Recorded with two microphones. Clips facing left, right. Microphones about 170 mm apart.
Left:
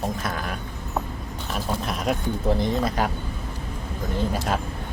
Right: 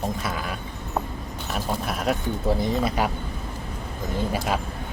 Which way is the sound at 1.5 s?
5° right (ahead or behind).